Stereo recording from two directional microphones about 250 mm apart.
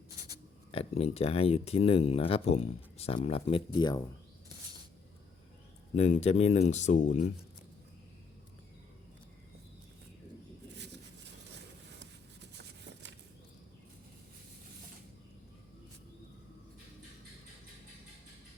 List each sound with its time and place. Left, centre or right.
0.7 s speech: left
6.0 s speech: left
12.5 s a sound: right